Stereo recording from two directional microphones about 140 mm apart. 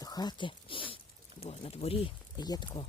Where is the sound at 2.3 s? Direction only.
30° left (ahead or behind).